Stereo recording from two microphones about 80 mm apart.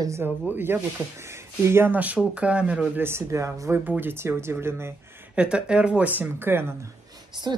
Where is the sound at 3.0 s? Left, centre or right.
Right.